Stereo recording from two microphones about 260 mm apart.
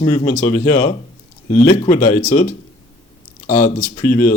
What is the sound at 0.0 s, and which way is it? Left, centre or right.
Speech, left.